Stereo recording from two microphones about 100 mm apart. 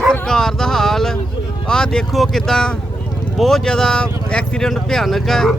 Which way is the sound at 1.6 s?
5° left (ahead or behind).